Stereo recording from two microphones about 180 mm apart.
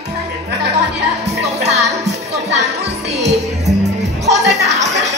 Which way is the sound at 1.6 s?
35° right (ahead or behind).